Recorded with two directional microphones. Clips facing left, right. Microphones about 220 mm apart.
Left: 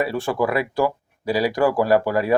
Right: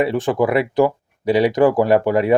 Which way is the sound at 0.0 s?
20° right (ahead or behind).